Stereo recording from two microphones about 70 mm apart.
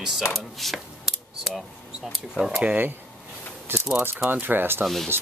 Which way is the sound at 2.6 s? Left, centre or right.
Right.